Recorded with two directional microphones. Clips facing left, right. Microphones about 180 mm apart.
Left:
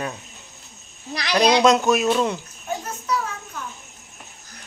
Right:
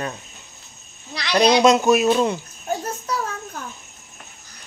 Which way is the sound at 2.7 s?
40° right (ahead or behind).